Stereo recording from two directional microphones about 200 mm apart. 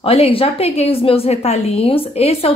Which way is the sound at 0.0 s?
30° left (ahead or behind).